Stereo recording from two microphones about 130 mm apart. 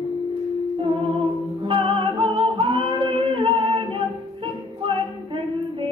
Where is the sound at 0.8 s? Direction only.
40° right (ahead or behind).